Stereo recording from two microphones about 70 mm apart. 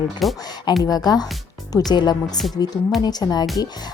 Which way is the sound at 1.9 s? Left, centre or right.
Left.